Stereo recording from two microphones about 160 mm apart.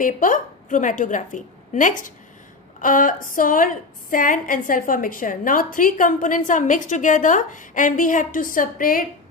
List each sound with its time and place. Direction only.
0.0 s a woman's voice: 55° left (ahead or behind)